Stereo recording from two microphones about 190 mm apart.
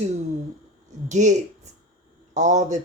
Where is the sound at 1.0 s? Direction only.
40° right (ahead or behind).